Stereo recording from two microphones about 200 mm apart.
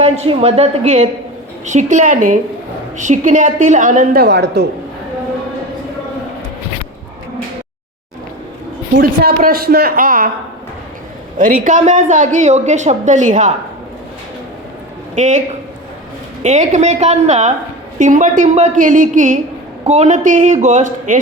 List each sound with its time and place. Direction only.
0.0 s a woman's voice: 30° right (ahead or behind); by 4.7 s 55° right (ahead or behind)
9.0 s a woman's voice: 50° right (ahead or behind)
11.3 s a woman's voice: 45° right (ahead or behind)
15.1 s a woman's voice: 35° right (ahead or behind)
16.4 s a woman's voice: 35° right (ahead or behind)